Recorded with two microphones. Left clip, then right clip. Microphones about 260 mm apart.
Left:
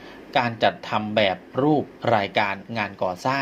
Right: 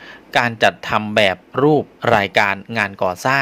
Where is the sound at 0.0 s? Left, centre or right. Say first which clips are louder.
Right 5 dB; right.